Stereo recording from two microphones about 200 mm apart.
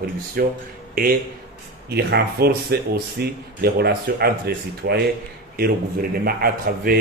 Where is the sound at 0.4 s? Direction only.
45° right (ahead or behind).